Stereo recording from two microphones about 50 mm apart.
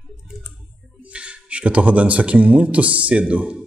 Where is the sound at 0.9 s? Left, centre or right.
Right.